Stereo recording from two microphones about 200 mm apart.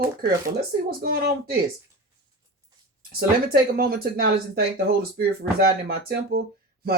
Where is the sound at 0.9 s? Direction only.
50° right (ahead or behind).